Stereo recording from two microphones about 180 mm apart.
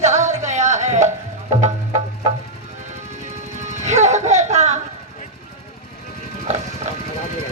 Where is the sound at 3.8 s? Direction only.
40° right (ahead or behind).